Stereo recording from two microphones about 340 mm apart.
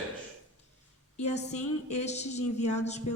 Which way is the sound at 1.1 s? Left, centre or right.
Centre.